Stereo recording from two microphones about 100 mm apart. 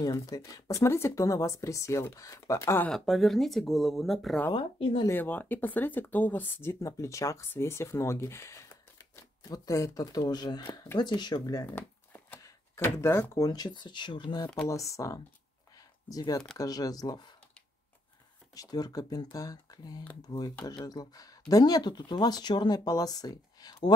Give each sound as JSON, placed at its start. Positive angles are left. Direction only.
{"t": 0.0, "sound": "speech", "side_deg": 40}
{"t": 2.9, "sound": "speech", "side_deg": 0}
{"t": 4.6, "sound": "speech", "side_deg": 65}
{"t": 5.1, "sound": "speech", "side_deg": 20}
{"t": 11.6, "sound": "a sound", "side_deg": 20}
{"t": 12.4, "sound": "drawer open or close", "side_deg": 30}
{"t": 13.4, "sound": "speech", "side_deg": 45}
{"t": 14.7, "sound": "speech", "side_deg": 30}
{"t": 18.5, "sound": "speech", "side_deg": 40}